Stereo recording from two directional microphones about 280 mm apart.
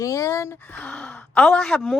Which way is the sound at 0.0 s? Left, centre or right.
Centre.